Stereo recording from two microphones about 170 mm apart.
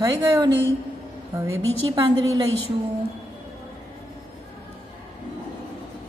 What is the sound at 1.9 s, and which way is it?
Speech, 25° right (ahead or behind).